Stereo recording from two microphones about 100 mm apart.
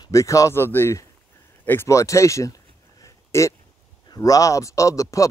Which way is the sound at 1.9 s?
30° left (ahead or behind).